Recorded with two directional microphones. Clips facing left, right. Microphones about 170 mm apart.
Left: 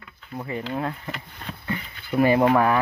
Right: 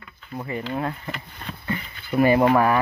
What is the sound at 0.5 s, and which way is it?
Speech, centre (ahead or behind).